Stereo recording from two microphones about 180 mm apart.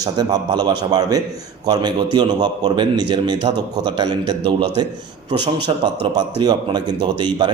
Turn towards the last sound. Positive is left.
turn(degrees=-25)  # may be behind; listen again after turning